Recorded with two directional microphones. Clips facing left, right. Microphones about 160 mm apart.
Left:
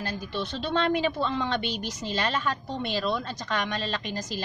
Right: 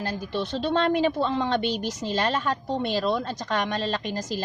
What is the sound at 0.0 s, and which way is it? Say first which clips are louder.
A woman's voice: right 3 dB; 40° right (ahead or behind).